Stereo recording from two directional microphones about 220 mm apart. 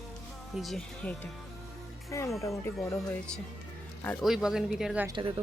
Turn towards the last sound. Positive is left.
turn(degrees=-20)  # may be behind; listen again after turning